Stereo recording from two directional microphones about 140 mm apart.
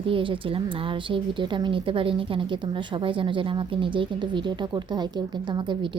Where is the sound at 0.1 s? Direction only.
40° right (ahead or behind).